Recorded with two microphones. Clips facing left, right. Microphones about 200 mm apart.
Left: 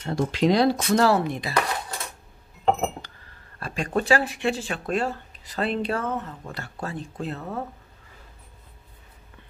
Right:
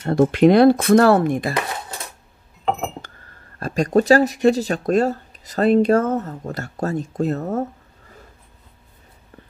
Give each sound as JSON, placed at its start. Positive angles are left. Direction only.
{"t": 0.0, "sound": "speech", "side_deg": -50}
{"t": 3.0, "sound": "a sound", "side_deg": -50}
{"t": 3.5, "sound": "speech", "side_deg": -40}